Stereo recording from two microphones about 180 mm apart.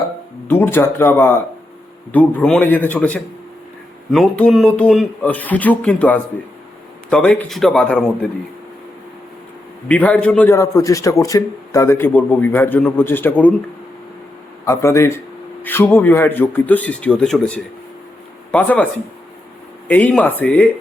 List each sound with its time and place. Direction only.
0.4 s a man's voice: 10° left (ahead or behind)
9.9 s a man's voice: 10° left (ahead or behind)
14.6 s a man's voice: 15° left (ahead or behind)
19.9 s a man's voice: 10° left (ahead or behind)